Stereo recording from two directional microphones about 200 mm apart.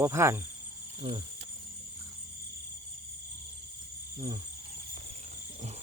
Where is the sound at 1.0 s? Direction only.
25° right (ahead or behind).